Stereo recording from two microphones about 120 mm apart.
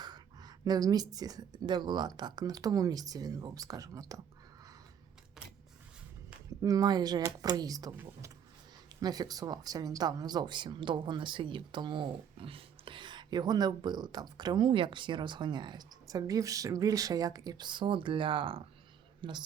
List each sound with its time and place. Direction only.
0.0 s speech: 35° right (ahead or behind)
6.6 s speech: 30° right (ahead or behind)
9.0 s speech: 35° right (ahead or behind)